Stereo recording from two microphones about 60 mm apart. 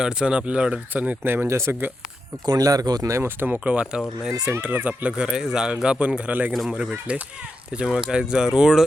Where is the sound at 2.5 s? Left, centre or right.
Right.